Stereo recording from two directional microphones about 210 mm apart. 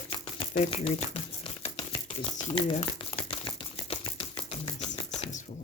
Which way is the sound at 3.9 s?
25° left (ahead or behind).